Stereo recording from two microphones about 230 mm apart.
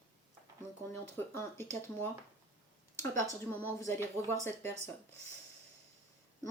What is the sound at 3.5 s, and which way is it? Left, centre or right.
Speech, centre.